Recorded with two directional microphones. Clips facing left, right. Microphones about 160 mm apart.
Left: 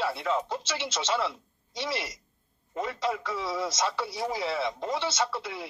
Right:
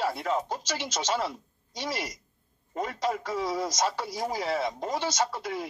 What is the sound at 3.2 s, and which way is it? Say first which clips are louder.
Speech: right 2 dB; 40° right (ahead or behind).